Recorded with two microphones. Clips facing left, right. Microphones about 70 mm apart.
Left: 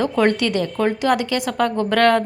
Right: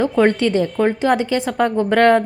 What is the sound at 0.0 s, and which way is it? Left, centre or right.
A woman's voice, centre.